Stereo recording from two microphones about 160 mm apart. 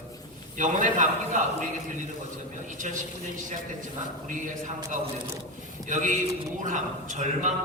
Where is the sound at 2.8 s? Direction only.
50° right (ahead or behind).